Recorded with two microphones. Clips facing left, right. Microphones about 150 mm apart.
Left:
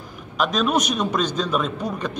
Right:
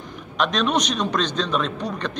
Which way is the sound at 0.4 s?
5° left (ahead or behind).